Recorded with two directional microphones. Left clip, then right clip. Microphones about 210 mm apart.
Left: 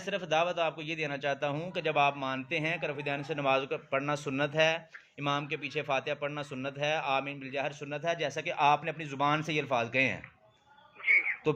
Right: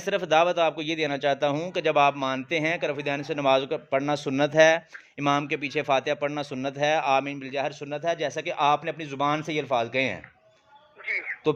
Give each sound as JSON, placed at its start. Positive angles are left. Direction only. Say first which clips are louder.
{"t": 0.0, "sound": "a man's voice", "louder": "right 8 dB", "side_deg": -55}
{"t": 11.5, "sound": "speech", "louder": "right 5 dB", "side_deg": -30}